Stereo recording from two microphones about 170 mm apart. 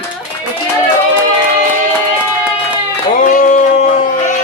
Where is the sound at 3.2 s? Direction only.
50° left (ahead or behind).